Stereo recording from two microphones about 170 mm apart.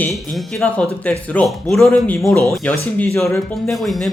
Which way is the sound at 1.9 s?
15° left (ahead or behind).